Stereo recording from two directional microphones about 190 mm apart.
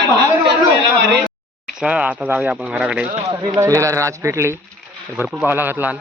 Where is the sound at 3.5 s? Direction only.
15° right (ahead or behind).